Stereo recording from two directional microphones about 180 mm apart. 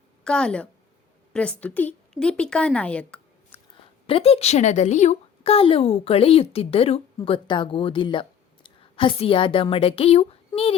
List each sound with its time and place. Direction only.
0.3 s speech: 5° left (ahead or behind)
4.0 s a woman's voice: 30° left (ahead or behind)